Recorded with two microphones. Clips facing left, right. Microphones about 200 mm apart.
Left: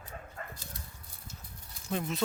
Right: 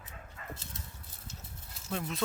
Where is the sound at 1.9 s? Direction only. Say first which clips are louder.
Left 3 dB; centre (ahead or behind).